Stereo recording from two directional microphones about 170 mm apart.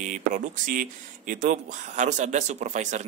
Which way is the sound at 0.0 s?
45° right (ahead or behind).